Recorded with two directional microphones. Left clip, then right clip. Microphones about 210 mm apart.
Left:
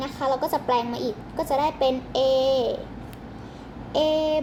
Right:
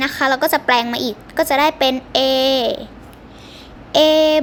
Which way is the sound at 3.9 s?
75° right (ahead or behind).